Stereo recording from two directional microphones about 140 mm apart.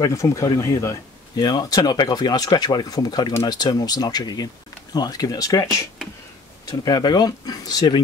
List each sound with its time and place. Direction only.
0.0 s speech: 20° left (ahead or behind)